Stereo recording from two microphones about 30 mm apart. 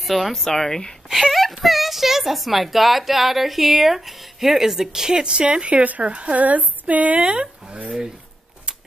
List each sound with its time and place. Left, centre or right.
0.0 s speech: centre; by 0.9 s left
1.2 s a sound: centre
1.6 s speech: centre
5.2 s speech: right
5.9 s a sound: right
7.2 s speech: right